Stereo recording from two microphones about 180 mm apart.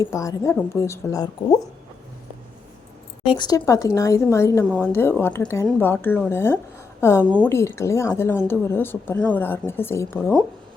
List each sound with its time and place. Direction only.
0.0 s speech: 20° left (ahead or behind)
3.2 s a woman's voice: 25° left (ahead or behind)